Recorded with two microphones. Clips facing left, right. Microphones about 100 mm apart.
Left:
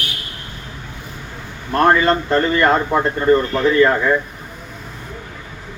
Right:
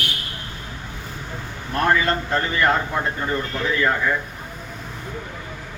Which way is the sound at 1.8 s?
60° left (ahead or behind).